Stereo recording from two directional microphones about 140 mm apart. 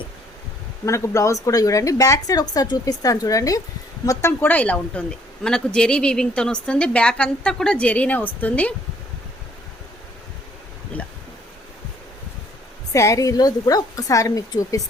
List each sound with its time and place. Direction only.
0.9 s speech: 20° left (ahead or behind)
10.9 s a sound: 10° left (ahead or behind)
12.9 s speech: 20° left (ahead or behind)